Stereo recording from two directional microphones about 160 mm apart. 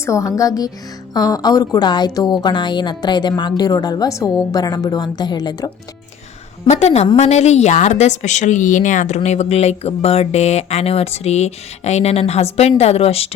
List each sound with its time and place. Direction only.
0.0 s a woman's voice: 20° left (ahead or behind)
6.7 s speech: 45° left (ahead or behind)